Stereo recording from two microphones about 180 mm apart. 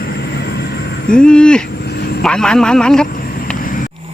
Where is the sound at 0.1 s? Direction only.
65° left (ahead or behind).